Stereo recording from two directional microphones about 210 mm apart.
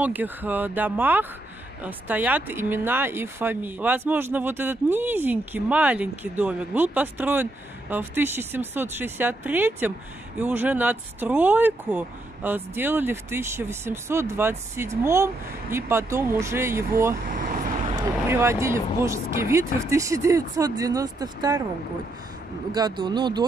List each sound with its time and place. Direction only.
0.0 s speech: 10° right (ahead or behind)
18.3 s speech: 15° right (ahead or behind)
22.7 s speech: 20° right (ahead or behind)